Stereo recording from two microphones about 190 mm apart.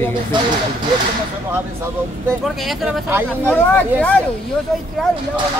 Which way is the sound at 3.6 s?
10° left (ahead or behind).